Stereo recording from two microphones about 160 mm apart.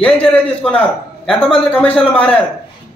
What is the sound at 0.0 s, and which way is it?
A man's voice, 5° left (ahead or behind).